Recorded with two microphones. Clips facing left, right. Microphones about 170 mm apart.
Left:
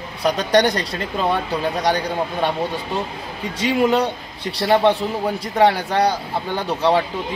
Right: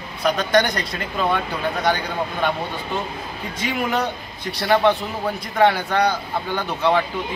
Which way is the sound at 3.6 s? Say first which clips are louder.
Left 6 dB; 30° left (ahead or behind).